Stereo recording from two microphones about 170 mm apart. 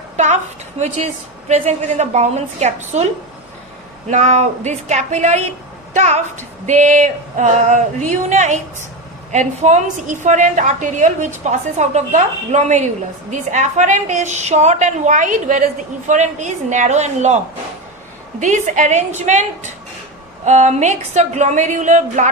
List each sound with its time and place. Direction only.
0.8 s a woman's voice: 35° right (ahead or behind)
4.1 s female singing: 45° right (ahead or behind)
18.3 s female singing: 45° right (ahead or behind)